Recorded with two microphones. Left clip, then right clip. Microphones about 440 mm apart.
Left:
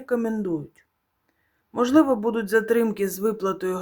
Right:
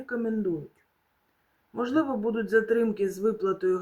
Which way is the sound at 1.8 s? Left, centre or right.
Left.